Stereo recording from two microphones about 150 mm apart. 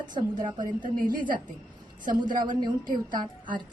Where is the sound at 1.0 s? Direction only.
65° right (ahead or behind).